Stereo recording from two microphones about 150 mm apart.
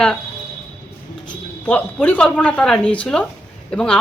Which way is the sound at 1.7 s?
10° left (ahead or behind).